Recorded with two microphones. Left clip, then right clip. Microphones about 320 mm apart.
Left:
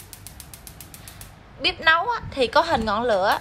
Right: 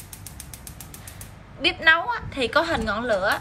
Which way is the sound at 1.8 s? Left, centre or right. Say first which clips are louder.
Even; centre.